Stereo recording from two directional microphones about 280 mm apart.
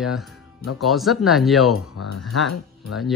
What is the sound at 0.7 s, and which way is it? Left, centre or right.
Speech, centre.